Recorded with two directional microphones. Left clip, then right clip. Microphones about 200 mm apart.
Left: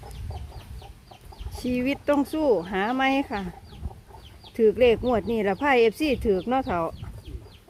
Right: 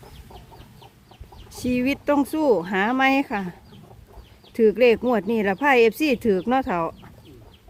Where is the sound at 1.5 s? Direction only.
15° right (ahead or behind).